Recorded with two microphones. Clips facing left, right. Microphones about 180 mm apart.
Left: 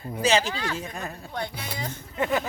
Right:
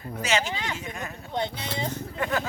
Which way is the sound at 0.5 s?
20° right (ahead or behind).